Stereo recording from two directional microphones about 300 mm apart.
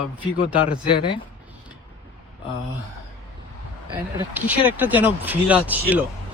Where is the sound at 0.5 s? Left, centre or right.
Left.